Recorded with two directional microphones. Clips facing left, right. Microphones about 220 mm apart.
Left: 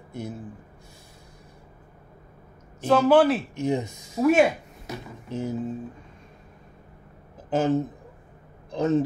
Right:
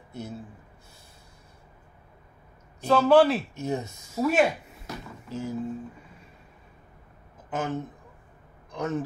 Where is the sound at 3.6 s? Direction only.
15° left (ahead or behind).